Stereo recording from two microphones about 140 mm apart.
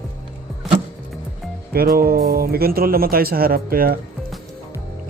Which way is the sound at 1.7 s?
90° right.